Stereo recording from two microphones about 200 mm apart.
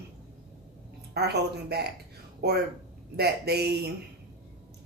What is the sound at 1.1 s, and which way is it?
Speech, 55° right (ahead or behind).